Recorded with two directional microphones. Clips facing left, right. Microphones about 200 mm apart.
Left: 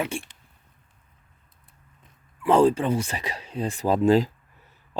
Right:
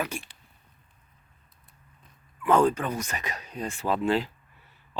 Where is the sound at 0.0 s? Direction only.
25° left (ahead or behind).